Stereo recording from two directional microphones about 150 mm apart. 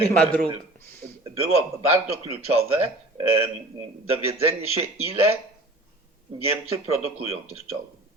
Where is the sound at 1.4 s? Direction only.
45° right (ahead or behind).